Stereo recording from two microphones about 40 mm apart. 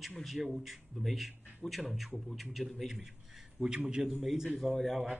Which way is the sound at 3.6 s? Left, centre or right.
Right.